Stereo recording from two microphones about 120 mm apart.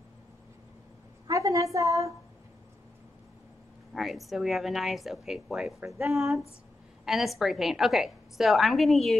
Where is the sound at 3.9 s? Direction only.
Centre (ahead or behind).